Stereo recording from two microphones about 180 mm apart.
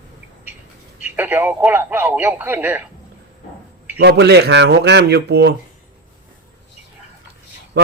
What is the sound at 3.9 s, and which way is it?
A man's voice, 65° right (ahead or behind).